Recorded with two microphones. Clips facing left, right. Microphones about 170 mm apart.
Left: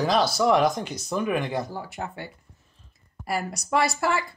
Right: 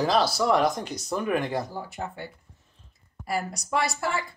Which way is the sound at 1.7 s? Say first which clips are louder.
Left 1 dB; 75° left (ahead or behind).